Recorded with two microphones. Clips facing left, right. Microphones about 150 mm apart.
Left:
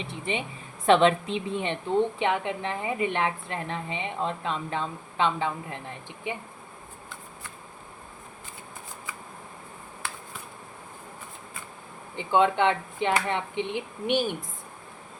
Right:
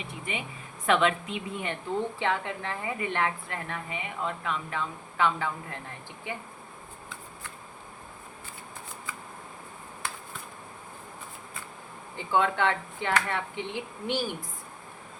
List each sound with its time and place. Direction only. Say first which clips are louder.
0.0 s a woman's voice: left 5 dB; 30° left (ahead or behind)
12.1 s a woman's voice: left 4 dB; 20° left (ahead or behind)